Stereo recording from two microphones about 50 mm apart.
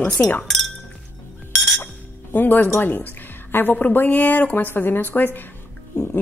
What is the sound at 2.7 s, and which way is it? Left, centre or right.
A woman's voice, left.